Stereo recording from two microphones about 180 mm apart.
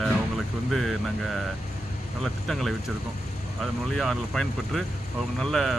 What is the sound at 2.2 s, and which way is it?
Speech, centre (ahead or behind).